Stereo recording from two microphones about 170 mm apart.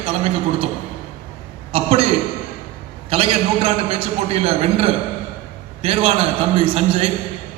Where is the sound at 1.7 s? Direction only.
35° right (ahead or behind).